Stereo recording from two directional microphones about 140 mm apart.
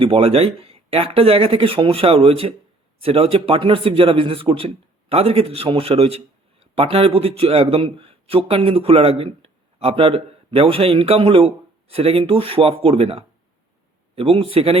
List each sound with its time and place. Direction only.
0.0 s a man's voice: 45° right (ahead or behind)